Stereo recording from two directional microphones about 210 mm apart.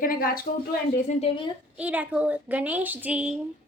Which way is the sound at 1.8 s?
5° right (ahead or behind).